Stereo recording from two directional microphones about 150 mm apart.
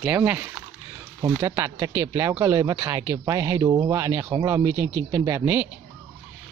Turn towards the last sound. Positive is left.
turn(degrees=-15)  # may be behind; listen again after turning